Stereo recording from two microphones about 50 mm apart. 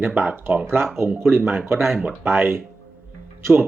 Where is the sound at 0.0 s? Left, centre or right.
Right.